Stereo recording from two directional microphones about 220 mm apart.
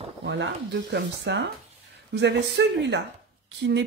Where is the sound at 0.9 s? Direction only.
55° right (ahead or behind).